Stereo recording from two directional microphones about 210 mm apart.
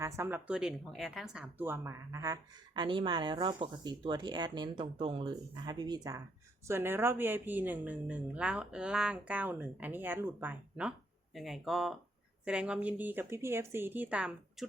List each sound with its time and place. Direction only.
0.0 s a woman's voice: 10° right (ahead or behind)